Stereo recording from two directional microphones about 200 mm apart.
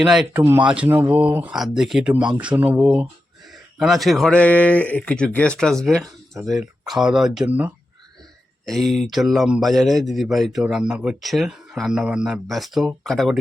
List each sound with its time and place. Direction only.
0.0 s speech: centre (ahead or behind)